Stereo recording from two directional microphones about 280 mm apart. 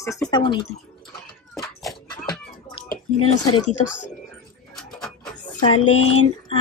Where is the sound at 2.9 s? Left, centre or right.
Left.